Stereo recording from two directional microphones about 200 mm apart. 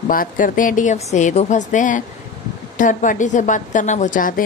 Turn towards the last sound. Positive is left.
turn(degrees=45)  # may be behind; listen again after turning